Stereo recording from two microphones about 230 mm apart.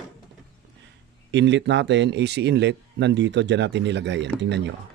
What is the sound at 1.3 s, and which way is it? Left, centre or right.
Speech, right.